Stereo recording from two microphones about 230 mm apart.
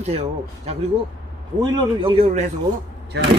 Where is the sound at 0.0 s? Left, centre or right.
Right.